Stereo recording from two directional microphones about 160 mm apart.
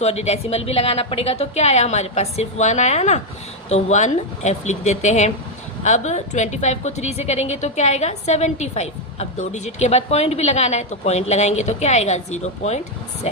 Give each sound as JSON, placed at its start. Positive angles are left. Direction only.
{"t": 0.0, "sound": "a woman's voice", "side_deg": 40}